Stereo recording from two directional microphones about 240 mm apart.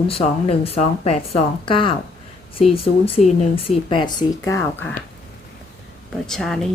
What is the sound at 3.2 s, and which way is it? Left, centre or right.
Speech, left.